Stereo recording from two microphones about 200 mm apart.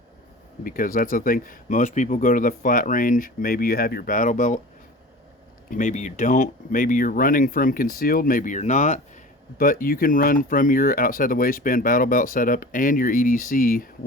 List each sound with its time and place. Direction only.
0.6 s speech: 45° left (ahead or behind)
5.7 s speech: 40° left (ahead or behind)